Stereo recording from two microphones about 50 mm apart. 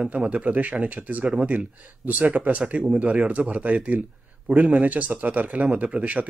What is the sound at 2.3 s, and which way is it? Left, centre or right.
Speech, right.